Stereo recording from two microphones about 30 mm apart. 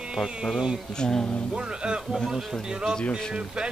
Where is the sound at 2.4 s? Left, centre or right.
Centre.